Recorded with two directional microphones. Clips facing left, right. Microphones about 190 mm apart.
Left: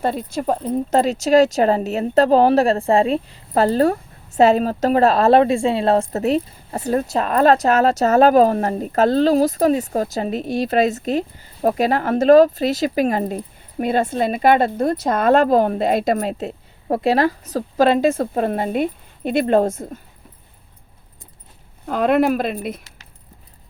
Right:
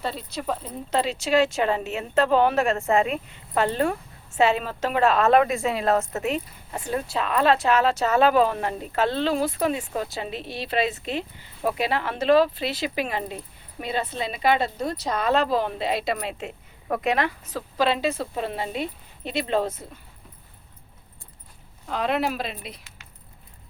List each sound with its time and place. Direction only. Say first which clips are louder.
0.0 s a woman's voice: left 8 dB; 50° left (ahead or behind)
21.8 s speech: left 9 dB; 50° left (ahead or behind)